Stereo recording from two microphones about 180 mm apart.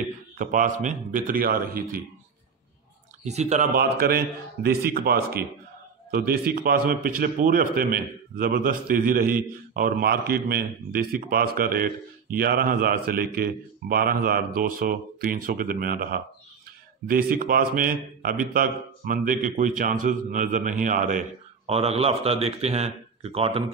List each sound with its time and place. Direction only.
0.4 s a man's voice: 45° right (ahead or behind)
3.3 s speech: 40° right (ahead or behind)
3.7 s a man's voice: 60° right (ahead or behind)
21.6 s speech: 35° right (ahead or behind)